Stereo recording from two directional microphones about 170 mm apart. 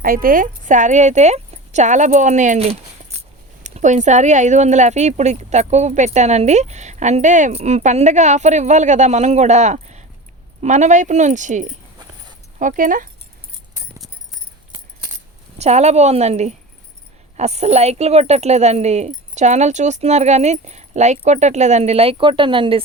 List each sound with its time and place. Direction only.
0.0 s speech: 55° right (ahead or behind)
15.5 s speech: 40° right (ahead or behind)